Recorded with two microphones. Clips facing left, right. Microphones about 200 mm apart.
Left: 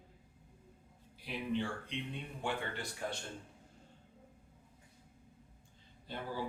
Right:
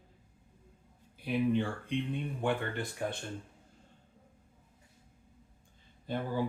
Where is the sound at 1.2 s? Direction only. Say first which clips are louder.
Right 7 dB; 50° right (ahead or behind).